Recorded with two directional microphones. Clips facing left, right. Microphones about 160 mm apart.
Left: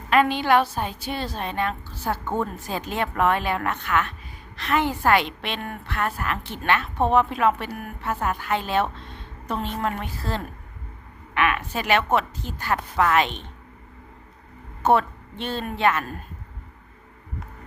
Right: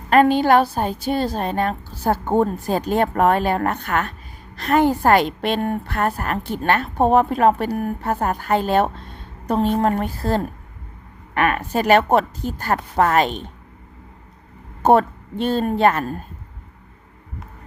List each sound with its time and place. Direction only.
0.1 s a woman's voice: 45° right (ahead or behind)
14.8 s speech: 40° right (ahead or behind)